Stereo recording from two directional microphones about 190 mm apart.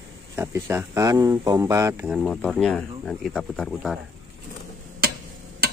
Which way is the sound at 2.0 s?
Centre (ahead or behind).